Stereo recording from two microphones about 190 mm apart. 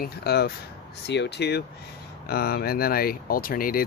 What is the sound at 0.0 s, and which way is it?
Speech, 55° left (ahead or behind).